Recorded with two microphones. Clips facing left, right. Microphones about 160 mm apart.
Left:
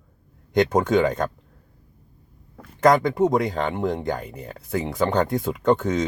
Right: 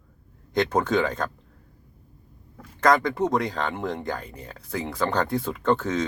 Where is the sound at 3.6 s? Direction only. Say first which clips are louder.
Left 4 dB; 15° left (ahead or behind).